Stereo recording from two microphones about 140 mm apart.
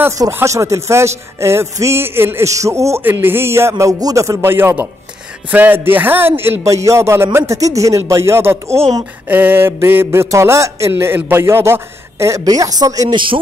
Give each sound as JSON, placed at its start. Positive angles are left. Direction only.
{"t": 0.2, "sound": "a man's voice", "side_deg": -20}